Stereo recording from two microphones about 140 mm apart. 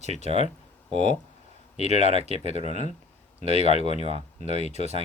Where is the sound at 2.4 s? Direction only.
50° left (ahead or behind).